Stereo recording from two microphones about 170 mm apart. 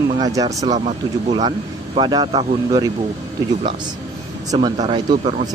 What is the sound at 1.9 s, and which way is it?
Speech, 25° right (ahead or behind).